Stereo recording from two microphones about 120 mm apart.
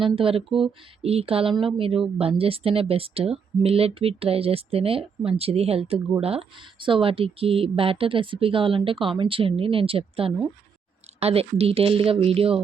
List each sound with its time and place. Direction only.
0.2 s speech: 50° right (ahead or behind)